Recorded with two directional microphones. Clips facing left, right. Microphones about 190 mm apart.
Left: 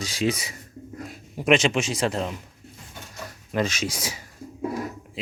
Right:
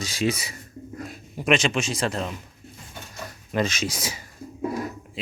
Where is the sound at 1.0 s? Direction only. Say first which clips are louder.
Left 2 dB; 20° left (ahead or behind).